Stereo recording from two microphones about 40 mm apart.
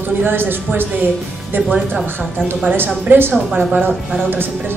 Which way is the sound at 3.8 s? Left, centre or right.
Right.